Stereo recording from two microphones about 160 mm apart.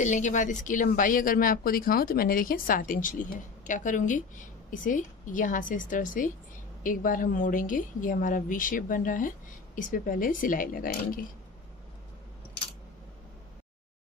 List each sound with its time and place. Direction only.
0.0 s speech: 50° left (ahead or behind)